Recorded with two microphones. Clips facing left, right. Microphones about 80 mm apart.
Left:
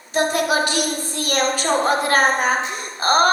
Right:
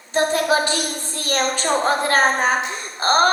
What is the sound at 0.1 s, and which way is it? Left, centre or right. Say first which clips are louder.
A woman's voice: right 1 dB; right.